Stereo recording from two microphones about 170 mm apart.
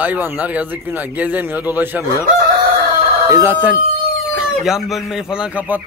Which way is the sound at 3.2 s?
15° right (ahead or behind).